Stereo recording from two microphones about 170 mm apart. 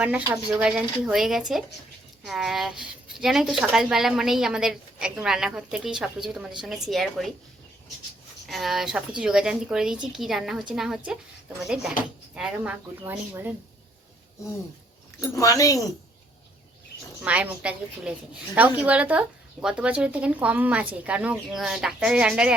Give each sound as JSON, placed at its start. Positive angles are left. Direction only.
{"t": 0.0, "sound": "a woman's voice", "side_deg": -10}
{"t": 8.4, "sound": "a woman's voice", "side_deg": 0}
{"t": 15.4, "sound": "speech", "side_deg": 20}
{"t": 17.2, "sound": "speech", "side_deg": -10}